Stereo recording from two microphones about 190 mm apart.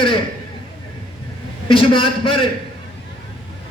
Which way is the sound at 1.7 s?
25° left (ahead or behind).